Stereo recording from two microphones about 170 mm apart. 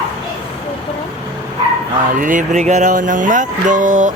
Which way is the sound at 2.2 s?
50° right (ahead or behind).